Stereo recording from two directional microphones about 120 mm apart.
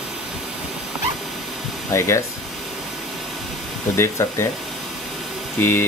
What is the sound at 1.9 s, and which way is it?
Speech, 25° left (ahead or behind).